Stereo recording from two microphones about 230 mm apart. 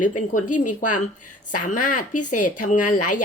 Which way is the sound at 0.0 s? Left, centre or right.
Left.